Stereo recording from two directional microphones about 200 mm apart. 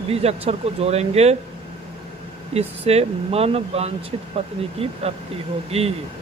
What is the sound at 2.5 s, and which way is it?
Speech, 30° right (ahead or behind).